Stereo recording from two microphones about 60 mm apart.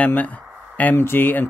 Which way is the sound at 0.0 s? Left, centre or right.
Left.